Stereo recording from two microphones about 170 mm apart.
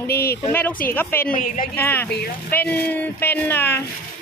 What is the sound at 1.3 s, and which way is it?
Speech, 50° left (ahead or behind).